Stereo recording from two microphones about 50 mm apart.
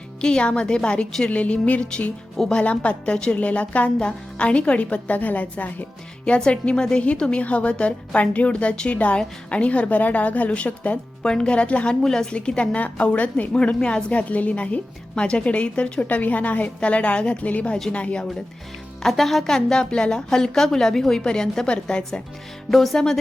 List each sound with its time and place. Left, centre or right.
0.2 s a woman's voice: centre
11.2 s a woman's voice: centre
12.0 s a woman's voice: centre
19.0 s a woman's voice: centre
22.7 s speech: centre